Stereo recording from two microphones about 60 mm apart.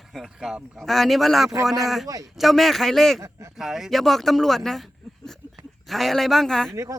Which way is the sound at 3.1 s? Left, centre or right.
Right.